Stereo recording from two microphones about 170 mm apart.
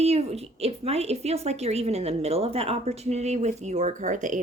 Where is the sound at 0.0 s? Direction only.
40° right (ahead or behind).